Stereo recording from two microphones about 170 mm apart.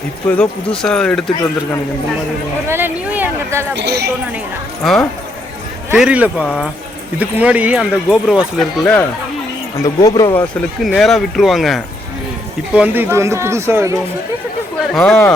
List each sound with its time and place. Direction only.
0.3 s speech: 5° left (ahead or behind)
2.6 s speech: 10° right (ahead or behind)
3.8 s speech: 80° right
4.8 s speech: centre (ahead or behind)
9.7 s speech: 20° left (ahead or behind)
10.8 s speech: centre (ahead or behind); by 13.9 s 15° right (ahead or behind)
14.9 s speech: 5° left (ahead or behind)